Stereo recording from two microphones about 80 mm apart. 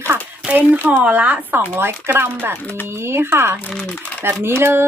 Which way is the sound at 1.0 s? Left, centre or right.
Centre.